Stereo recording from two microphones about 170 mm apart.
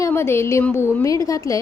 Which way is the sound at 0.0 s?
15° left (ahead or behind).